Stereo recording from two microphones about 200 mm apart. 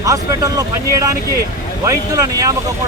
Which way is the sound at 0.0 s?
15° right (ahead or behind).